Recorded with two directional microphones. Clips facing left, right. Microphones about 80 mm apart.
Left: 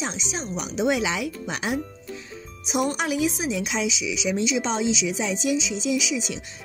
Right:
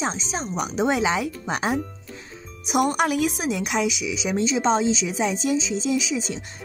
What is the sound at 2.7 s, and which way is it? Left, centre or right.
A woman's voice, right.